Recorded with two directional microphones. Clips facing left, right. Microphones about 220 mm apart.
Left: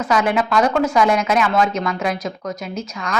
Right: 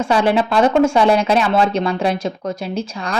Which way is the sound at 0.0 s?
30° right (ahead or behind).